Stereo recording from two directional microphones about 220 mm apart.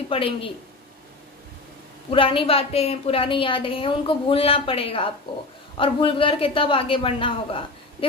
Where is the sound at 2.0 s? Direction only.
25° left (ahead or behind).